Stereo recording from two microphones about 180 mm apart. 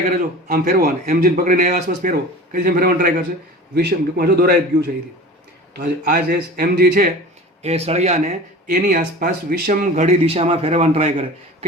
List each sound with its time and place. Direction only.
0.4 s speech: 55° right (ahead or behind)
3.8 s speech: 65° right (ahead or behind)
7.6 s a man's voice: 35° right (ahead or behind)
8.7 s speech: 55° right (ahead or behind)
9.9 s a man's voice: 35° right (ahead or behind)